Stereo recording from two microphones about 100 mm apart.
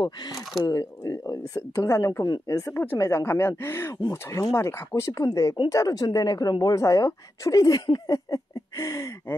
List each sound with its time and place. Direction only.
0.0 s a woman's voice: 45° left (ahead or behind)